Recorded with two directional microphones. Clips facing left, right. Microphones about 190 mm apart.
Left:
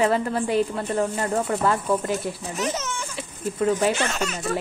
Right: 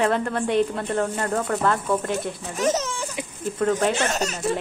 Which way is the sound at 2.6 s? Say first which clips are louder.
Right 6 dB; 40° right (ahead or behind).